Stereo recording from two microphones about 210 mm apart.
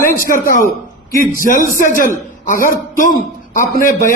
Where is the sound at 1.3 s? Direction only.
40° left (ahead or behind).